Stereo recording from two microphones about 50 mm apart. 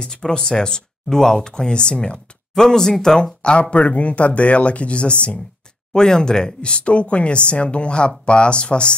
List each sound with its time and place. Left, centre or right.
0.0 s speech: centre
3.7 s speech: left